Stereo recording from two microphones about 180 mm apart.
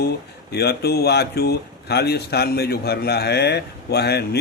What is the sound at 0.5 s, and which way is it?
Speech, 65° left (ahead or behind).